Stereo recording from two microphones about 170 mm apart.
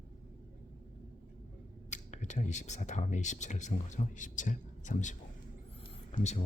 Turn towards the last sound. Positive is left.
turn(degrees=45)  # may be behind; listen again after turning